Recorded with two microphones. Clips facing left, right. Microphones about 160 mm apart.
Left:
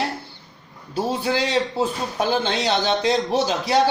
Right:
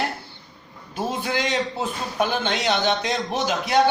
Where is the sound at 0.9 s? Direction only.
30° left (ahead or behind).